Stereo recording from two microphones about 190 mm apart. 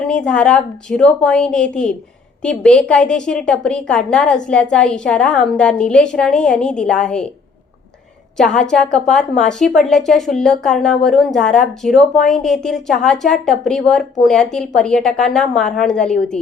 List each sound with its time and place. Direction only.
0.0 s a woman's voice: 5° left (ahead or behind)
8.4 s a woman's voice: 5° left (ahead or behind)